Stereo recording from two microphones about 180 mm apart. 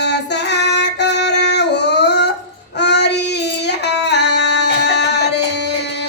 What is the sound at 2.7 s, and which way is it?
Child singing, 70° left (ahead or behind).